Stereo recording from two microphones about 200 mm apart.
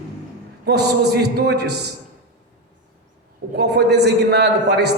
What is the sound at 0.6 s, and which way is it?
A man's voice, 55° right (ahead or behind).